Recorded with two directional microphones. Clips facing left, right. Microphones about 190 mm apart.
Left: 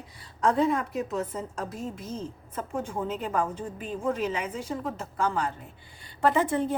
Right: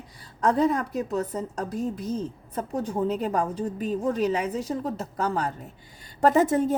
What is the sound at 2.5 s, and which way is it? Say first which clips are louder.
A woman's voice: right 4 dB; 35° right (ahead or behind).